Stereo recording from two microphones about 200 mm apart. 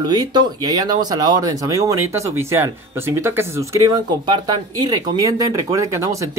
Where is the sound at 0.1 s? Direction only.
20° right (ahead or behind).